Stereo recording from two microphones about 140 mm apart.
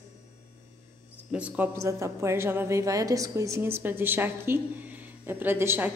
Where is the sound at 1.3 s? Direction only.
10° right (ahead or behind).